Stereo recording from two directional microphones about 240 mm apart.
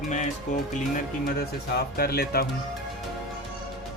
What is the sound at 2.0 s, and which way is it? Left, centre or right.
Speech, left.